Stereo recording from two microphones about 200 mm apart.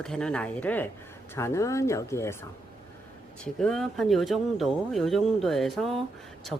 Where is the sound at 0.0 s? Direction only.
5° left (ahead or behind).